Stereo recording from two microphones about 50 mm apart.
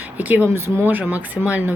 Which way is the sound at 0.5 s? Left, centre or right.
Right.